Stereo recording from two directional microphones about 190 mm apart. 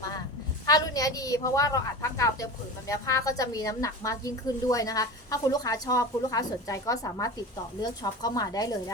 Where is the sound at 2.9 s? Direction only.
15° left (ahead or behind).